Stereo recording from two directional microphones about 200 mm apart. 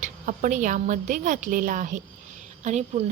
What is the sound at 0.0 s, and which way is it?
A woman's voice, 40° right (ahead or behind).